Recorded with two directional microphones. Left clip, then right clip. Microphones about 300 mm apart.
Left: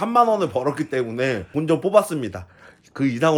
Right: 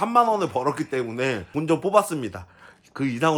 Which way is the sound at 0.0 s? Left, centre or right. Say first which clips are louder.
Left 2 dB; centre.